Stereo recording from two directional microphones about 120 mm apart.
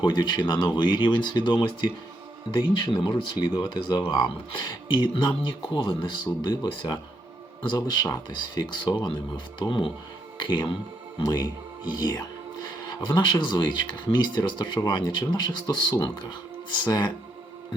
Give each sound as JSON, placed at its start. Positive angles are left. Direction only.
{"t": 0.0, "sound": "speech", "side_deg": 40}